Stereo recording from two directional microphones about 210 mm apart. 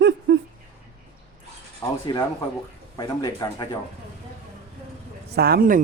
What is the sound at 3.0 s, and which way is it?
Speech, 20° left (ahead or behind).